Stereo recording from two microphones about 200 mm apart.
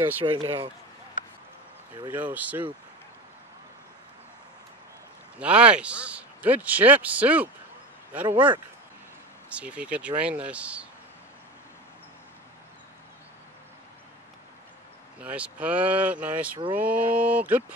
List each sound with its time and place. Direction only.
0.2 s speech: 25° right (ahead or behind)
2.0 s a man's voice: 10° right (ahead or behind)
5.4 s a man's voice: 5° right (ahead or behind)
15.2 s a man's voice: 5° right (ahead or behind)